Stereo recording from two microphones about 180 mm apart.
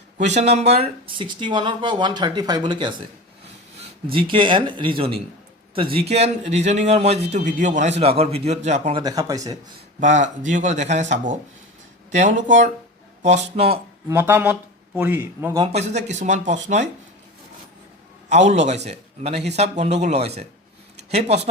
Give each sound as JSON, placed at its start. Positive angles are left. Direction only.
{"t": 0.2, "sound": "speech", "side_deg": -40}
{"t": 4.1, "sound": "a man's voice", "side_deg": -30}
{"t": 9.0, "sound": "speech", "side_deg": -20}
{"t": 10.0, "sound": "a man's voice", "side_deg": -45}
{"t": 14.1, "sound": "speech", "side_deg": -10}
{"t": 15.6, "sound": "a man's voice", "side_deg": -40}
{"t": 18.3, "sound": "a man's voice", "side_deg": -40}